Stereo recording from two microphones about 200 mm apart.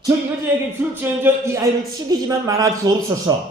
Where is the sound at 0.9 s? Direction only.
10° right (ahead or behind).